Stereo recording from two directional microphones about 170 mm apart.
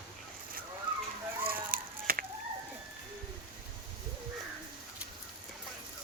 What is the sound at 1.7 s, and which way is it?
Chicken, 55° right (ahead or behind).